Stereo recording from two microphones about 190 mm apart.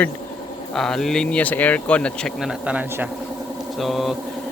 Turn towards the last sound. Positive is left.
turn(degrees=0)  # may be behind; listen again after turning